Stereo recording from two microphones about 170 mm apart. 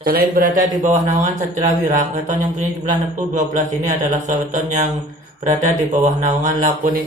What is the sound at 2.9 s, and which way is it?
A man's voice, 45° right (ahead or behind).